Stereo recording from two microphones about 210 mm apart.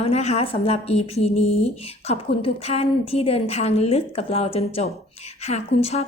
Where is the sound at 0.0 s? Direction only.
30° left (ahead or behind).